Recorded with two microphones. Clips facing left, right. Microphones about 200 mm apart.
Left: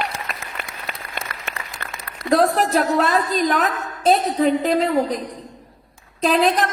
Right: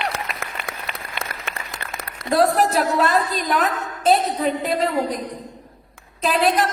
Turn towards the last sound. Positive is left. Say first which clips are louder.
# left 2 dB
turn(degrees=0)  # may be behind; listen again after turning